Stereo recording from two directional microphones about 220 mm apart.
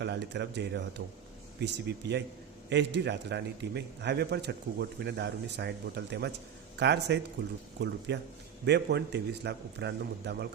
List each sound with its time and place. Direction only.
0.0 s a man's voice: 50° right (ahead or behind)